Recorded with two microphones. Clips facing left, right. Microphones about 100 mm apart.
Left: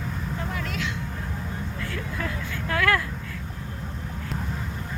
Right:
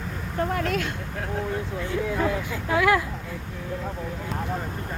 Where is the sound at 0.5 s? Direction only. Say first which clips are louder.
Right 5 dB; 50° right (ahead or behind).